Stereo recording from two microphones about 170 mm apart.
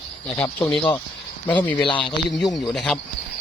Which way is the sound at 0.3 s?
10° left (ahead or behind).